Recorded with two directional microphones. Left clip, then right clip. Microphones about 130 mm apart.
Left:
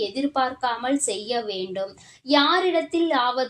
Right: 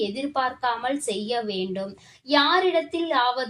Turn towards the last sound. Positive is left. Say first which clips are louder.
# left 1 dB
turn(degrees=35)  # may be behind; listen again after turning